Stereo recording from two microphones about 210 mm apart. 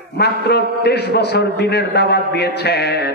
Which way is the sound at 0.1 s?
50° left (ahead or behind).